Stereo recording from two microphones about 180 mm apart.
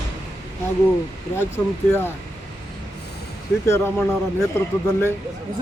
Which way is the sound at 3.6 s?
15° left (ahead or behind).